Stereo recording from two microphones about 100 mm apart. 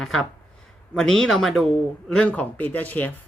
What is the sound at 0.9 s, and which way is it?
Speech, 5° left (ahead or behind).